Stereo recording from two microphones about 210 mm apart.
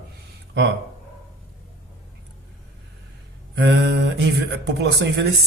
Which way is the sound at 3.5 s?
55° right (ahead or behind).